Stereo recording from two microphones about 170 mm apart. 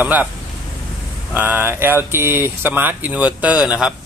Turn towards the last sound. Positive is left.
turn(degrees=-5)  # may be behind; listen again after turning